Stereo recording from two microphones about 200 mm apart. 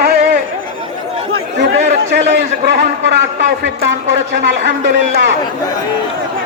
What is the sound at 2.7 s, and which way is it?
Speech, 60° right (ahead or behind).